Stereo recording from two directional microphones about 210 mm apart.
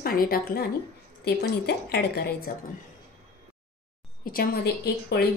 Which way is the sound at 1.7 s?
50° left (ahead or behind).